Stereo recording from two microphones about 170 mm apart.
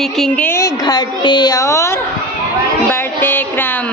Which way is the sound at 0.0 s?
5° left (ahead or behind).